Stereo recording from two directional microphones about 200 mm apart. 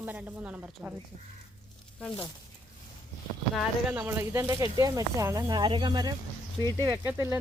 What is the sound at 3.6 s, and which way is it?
Speech, 10° right (ahead or behind).